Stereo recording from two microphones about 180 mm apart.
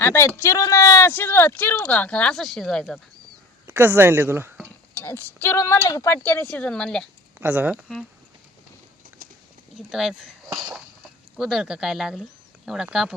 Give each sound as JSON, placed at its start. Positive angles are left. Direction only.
{"t": 0.0, "sound": "speech", "side_deg": 15}
{"t": 3.7, "sound": "speech", "side_deg": -10}
{"t": 4.9, "sound": "speech", "side_deg": 10}
{"t": 7.3, "sound": "speech", "side_deg": -10}
{"t": 9.0, "sound": "clip-clop", "side_deg": -50}
{"t": 9.7, "sound": "speech", "side_deg": -5}
{"t": 11.3, "sound": "speech", "side_deg": -5}